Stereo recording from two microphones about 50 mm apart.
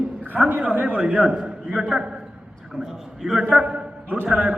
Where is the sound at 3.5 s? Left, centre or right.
Centre.